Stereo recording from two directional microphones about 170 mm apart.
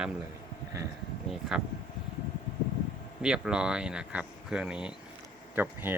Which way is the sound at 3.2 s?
5° right (ahead or behind).